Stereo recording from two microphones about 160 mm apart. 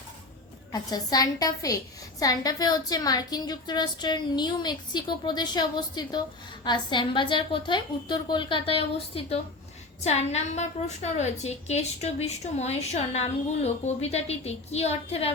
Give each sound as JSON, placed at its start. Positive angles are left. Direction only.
{"t": 0.7, "sound": "a woman's voice", "side_deg": 25}